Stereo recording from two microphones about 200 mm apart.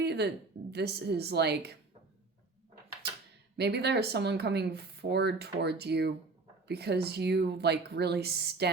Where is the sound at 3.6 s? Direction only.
55° right (ahead or behind).